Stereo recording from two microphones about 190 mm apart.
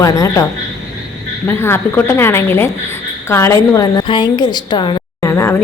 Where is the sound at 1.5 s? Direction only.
10° left (ahead or behind).